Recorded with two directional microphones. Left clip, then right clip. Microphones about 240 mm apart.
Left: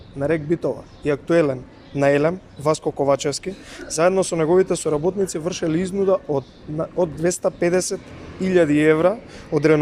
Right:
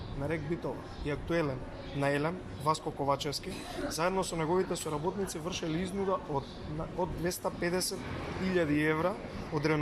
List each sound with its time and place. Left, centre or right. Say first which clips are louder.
0.2 s speech: left 15 dB; left